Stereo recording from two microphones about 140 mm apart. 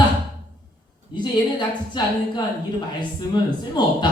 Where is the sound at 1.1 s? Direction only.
35° left (ahead or behind).